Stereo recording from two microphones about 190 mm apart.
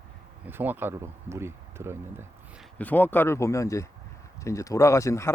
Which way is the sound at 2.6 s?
10° left (ahead or behind).